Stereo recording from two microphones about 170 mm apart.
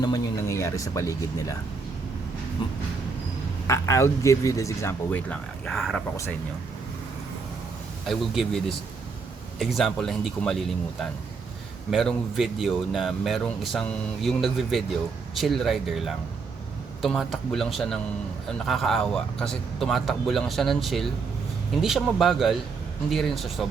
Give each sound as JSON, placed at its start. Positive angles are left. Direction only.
{"t": 0.0, "sound": "speech", "side_deg": 20}
{"t": 3.7, "sound": "speech", "side_deg": 15}
{"t": 8.0, "sound": "speech", "side_deg": 0}